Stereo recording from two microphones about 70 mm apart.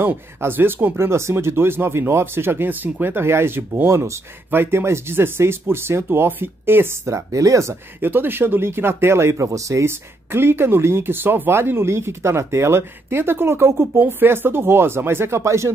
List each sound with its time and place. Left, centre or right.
0.0 s speech: right
8.0 s speech: right